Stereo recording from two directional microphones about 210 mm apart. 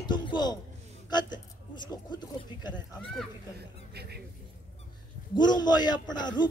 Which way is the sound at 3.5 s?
50° right (ahead or behind).